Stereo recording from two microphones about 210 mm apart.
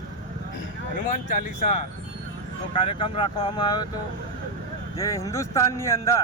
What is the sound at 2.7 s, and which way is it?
Speech, 25° left (ahead or behind).